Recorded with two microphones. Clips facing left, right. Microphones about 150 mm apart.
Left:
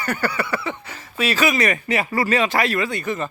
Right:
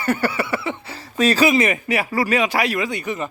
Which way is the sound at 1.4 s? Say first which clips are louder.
Even; 25° right (ahead or behind).